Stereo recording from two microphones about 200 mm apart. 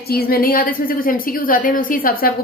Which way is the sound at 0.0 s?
50° left (ahead or behind).